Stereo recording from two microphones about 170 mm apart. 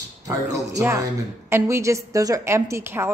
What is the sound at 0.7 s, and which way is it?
A woman's voice, 15° right (ahead or behind).